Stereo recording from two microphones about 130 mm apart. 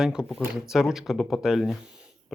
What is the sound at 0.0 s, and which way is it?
Speech, 5° right (ahead or behind).